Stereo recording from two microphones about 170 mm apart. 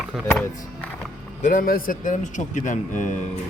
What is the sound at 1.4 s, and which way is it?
A man's voice, 55° left (ahead or behind).